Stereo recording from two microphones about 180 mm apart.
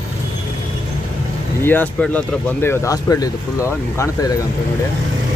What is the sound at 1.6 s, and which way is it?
Speech, 10° left (ahead or behind).